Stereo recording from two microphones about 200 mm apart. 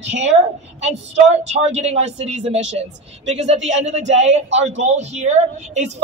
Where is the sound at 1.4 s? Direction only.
35° right (ahead or behind).